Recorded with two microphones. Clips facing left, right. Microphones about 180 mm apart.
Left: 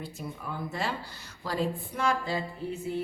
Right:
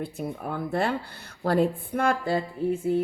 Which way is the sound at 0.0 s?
55° right (ahead or behind).